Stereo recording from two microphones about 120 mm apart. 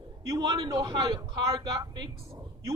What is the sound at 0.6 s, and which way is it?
A man's voice, 30° right (ahead or behind).